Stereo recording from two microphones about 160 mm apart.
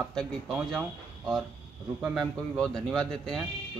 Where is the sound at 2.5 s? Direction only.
5° left (ahead or behind).